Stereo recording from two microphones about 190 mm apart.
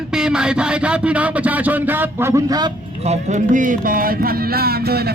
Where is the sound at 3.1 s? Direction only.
40° right (ahead or behind).